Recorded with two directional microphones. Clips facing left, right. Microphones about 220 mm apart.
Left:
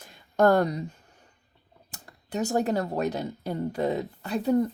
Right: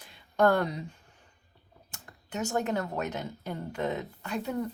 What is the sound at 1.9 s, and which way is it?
Speech, 35° left (ahead or behind).